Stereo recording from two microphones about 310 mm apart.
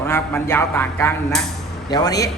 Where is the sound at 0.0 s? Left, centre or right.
Centre.